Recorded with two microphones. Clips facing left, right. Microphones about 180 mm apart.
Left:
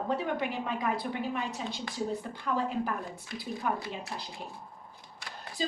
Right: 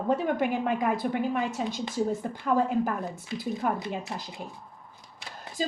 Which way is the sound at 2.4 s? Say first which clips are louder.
Right 6 dB; 45° right (ahead or behind).